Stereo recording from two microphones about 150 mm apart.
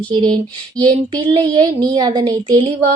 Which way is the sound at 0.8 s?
30° right (ahead or behind).